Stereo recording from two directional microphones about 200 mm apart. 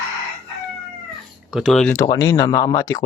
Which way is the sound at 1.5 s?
Centre (ahead or behind).